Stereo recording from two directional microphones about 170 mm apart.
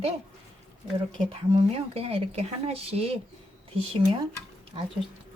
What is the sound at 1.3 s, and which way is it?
Speech, 35° right (ahead or behind).